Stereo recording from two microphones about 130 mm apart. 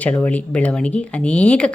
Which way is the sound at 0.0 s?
10° left (ahead or behind).